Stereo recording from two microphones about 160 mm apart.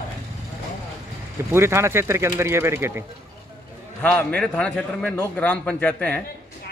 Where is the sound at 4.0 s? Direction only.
10° left (ahead or behind).